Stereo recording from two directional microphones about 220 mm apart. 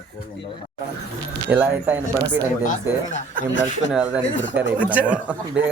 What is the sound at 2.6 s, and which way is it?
Speech, 35° left (ahead or behind).